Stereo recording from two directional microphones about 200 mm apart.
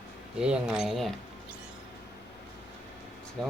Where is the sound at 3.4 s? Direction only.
5° left (ahead or behind).